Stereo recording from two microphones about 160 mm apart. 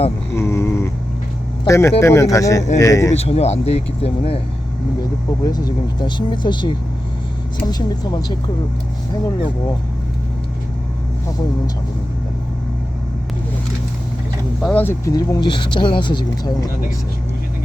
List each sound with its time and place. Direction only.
0.3 s a sound: 15° left (ahead or behind)
1.6 s speech: 20° left (ahead or behind)
3.2 s speech: 40° left (ahead or behind)
5.4 s speech: 25° left (ahead or behind)
14.6 s speech: 10° left (ahead or behind)
15.1 s speech: 25° left (ahead or behind)